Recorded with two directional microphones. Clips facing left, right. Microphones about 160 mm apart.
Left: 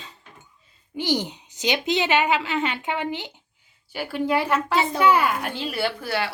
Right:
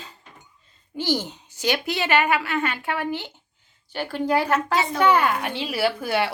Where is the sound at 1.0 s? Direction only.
15° left (ahead or behind); by 6.1 s 5° right (ahead or behind).